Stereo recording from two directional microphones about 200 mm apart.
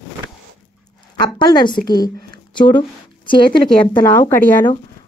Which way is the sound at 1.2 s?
20° left (ahead or behind).